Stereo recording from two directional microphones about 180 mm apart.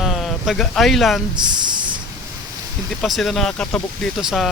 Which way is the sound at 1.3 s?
25° right (ahead or behind).